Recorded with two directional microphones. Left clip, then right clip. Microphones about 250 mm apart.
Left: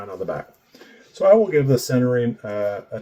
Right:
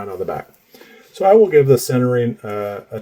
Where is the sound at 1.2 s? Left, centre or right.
Right.